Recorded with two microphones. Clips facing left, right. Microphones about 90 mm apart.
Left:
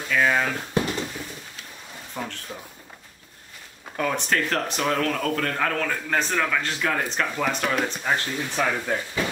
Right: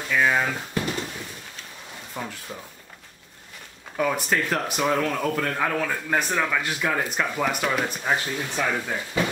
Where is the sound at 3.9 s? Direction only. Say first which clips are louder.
Right 1 dB; 5° right (ahead or behind).